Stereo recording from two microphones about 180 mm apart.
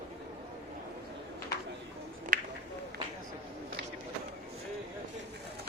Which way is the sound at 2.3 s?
45° right (ahead or behind).